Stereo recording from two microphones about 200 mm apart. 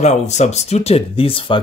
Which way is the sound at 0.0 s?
35° left (ahead or behind).